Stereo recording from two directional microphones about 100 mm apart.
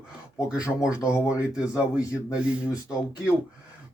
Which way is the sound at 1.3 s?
15° right (ahead or behind).